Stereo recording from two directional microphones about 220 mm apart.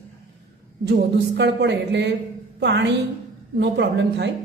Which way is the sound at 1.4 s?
50° right (ahead or behind).